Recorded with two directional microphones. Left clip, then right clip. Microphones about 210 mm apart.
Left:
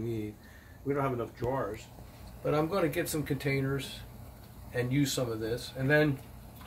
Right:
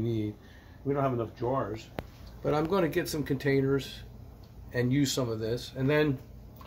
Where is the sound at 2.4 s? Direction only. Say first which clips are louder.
Right 1 dB; 50° right (ahead or behind).